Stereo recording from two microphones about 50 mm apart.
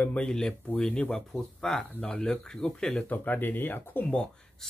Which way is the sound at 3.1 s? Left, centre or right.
Left.